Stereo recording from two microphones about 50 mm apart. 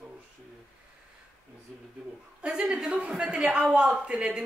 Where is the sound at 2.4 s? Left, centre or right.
Centre.